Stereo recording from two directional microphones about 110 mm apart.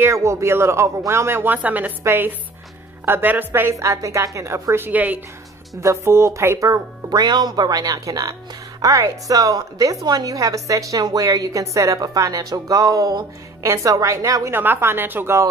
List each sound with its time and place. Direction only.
0.0 s speech: 25° right (ahead or behind)
5.8 s a woman's voice: 25° right (ahead or behind)